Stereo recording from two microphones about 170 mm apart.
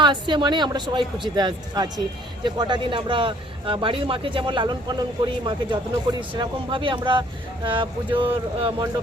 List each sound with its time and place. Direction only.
0.0 s speech: 25° right (ahead or behind)